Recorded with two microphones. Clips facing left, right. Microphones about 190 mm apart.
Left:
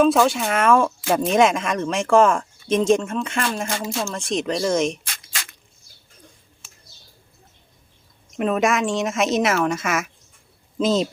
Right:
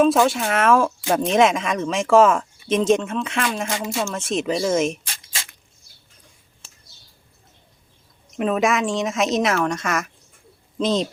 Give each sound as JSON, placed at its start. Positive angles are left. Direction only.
{"t": 0.0, "sound": "speech", "side_deg": 0}
{"t": 5.0, "sound": "a sound", "side_deg": -30}
{"t": 8.4, "sound": "speech", "side_deg": 0}